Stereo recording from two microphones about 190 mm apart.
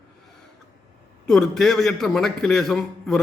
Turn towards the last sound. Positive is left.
turn(degrees=0)  # may be behind; listen again after turning